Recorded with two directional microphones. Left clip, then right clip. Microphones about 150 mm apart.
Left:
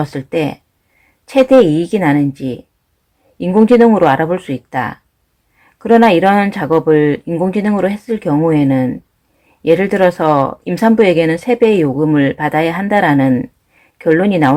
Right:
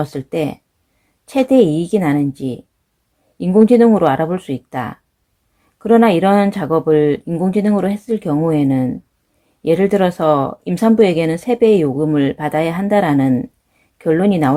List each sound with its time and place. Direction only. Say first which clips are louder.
0.0 s speech: left 3 dB; 40° right (ahead or behind)